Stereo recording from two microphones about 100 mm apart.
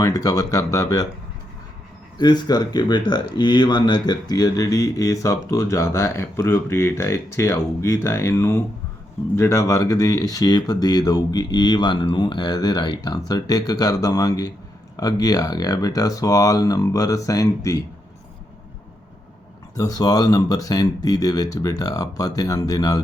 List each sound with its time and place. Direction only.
0.0 s speech: 35° left (ahead or behind)
2.1 s speech: 45° left (ahead or behind)
19.7 s speech: 40° left (ahead or behind)